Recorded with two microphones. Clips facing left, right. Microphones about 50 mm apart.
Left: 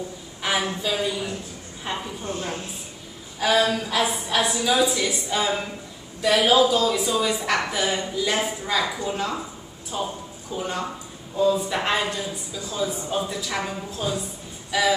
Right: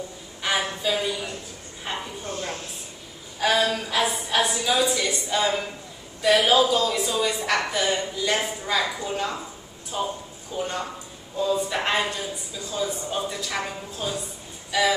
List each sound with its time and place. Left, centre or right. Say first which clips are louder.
0.4 s a woman's voice: left 1 dB; centre
2.2 s chopping: left 3 dB; centre
3.3 s a woman's voice: left 1 dB; centre
14.7 s music: left 1 dB; centre